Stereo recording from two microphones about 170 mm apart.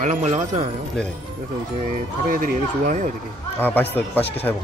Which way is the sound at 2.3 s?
50° right (ahead or behind).